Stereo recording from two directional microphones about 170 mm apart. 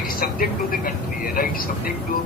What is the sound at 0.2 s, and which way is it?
Speech, 55° left (ahead or behind).